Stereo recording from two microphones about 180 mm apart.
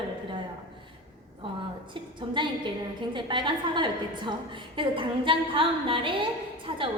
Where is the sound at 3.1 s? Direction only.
25° right (ahead or behind).